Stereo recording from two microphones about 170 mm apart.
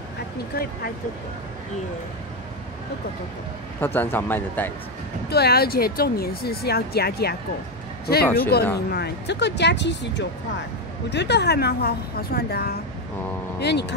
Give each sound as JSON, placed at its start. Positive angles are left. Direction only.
{"t": 0.5, "sound": "speech", "side_deg": 65}
{"t": 3.8, "sound": "speech", "side_deg": 10}
{"t": 5.3, "sound": "speech", "side_deg": 70}
{"t": 8.4, "sound": "a woman's voice", "side_deg": 65}
{"t": 13.6, "sound": "a woman's voice", "side_deg": 75}